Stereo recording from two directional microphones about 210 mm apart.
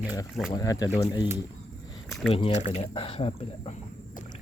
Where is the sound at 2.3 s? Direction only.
30° left (ahead or behind).